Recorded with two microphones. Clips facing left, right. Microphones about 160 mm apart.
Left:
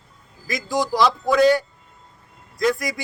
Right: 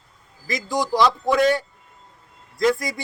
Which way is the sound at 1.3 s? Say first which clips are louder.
Left 5 dB; 25° right (ahead or behind).